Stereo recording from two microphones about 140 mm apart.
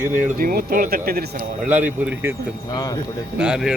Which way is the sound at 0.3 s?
90° right.